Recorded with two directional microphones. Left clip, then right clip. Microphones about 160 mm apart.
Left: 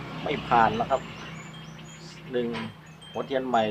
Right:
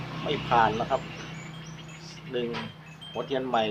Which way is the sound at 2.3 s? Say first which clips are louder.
Left 2 dB; 20° left (ahead or behind).